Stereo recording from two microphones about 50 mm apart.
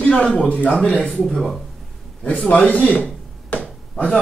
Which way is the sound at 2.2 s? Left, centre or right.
Left.